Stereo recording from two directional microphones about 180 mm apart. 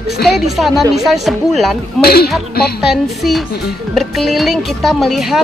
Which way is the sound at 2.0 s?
60° left (ahead or behind).